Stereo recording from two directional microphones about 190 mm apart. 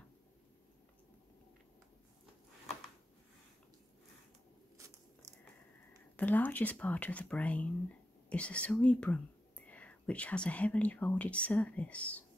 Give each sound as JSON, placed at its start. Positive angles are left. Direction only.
{"t": 4.7, "sound": "biting", "side_deg": -15}
{"t": 6.1, "sound": "speech", "side_deg": 10}